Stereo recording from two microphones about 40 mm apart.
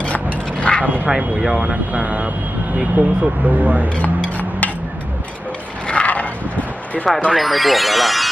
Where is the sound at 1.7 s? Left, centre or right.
Right.